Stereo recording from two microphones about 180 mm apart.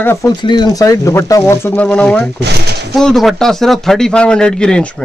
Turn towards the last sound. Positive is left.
turn(degrees=5)  # may be behind; listen again after turning